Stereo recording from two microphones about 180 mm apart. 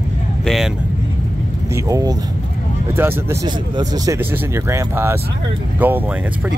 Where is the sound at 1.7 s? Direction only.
20° right (ahead or behind).